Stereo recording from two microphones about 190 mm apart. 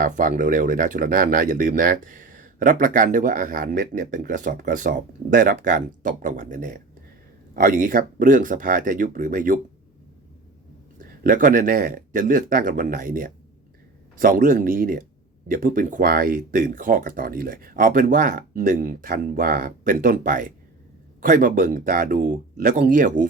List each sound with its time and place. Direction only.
0.0 s speech: 45° right (ahead or behind)
11.2 s speech: 45° right (ahead or behind)